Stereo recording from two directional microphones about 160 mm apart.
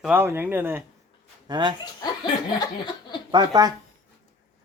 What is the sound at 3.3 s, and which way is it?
Speech, 25° right (ahead or behind).